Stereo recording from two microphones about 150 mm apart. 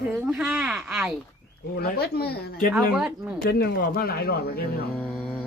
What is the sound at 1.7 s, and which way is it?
Speech, 90° left.